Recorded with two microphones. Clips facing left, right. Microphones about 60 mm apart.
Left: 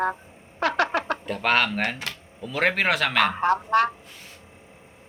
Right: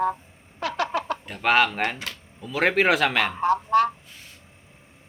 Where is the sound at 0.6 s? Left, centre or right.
Left.